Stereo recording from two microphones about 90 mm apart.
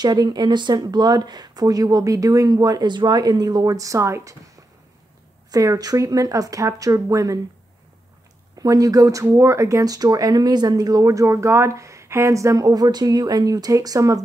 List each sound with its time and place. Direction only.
0.0 s speech: 50° right (ahead or behind); by 4.4 s 35° right (ahead or behind)
5.5 s speech: 45° right (ahead or behind)
8.5 s speech: 40° right (ahead or behind)